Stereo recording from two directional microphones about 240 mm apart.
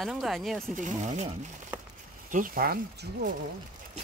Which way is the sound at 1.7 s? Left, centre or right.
Centre.